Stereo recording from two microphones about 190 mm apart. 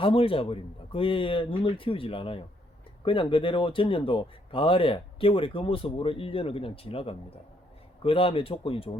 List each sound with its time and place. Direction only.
0.0 s speech: 30° left (ahead or behind)